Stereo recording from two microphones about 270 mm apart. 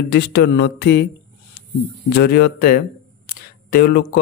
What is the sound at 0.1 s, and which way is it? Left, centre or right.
Speech, left.